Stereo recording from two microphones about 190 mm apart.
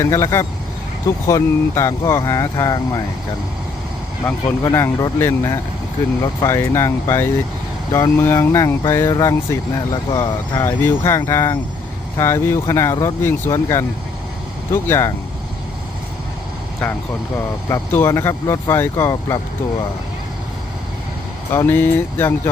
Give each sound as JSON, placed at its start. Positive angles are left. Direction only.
{"t": 0.0, "sound": "speech", "side_deg": 15}
{"t": 4.3, "sound": "speech", "side_deg": 15}
{"t": 16.8, "sound": "speech", "side_deg": 5}
{"t": 21.5, "sound": "speech", "side_deg": 10}